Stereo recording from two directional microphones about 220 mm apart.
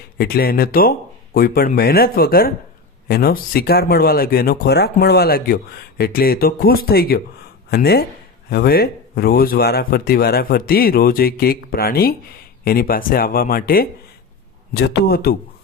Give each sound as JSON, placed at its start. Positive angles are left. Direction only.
{"t": 0.2, "sound": "speech", "side_deg": 45}